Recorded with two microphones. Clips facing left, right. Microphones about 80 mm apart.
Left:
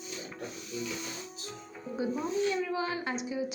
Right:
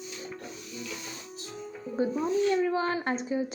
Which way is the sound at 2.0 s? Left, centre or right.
Right.